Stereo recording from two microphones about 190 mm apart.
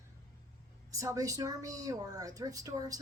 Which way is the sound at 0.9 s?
15° right (ahead or behind).